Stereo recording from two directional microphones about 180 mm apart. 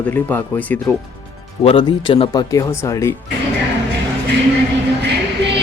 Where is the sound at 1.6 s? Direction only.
30° left (ahead or behind).